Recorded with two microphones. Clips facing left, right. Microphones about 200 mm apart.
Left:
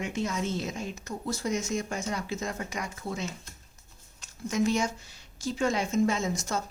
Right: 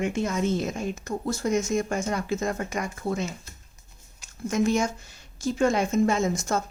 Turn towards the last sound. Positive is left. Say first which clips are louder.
# right 4 dB
turn(degrees=-50)  # may be behind; listen again after turning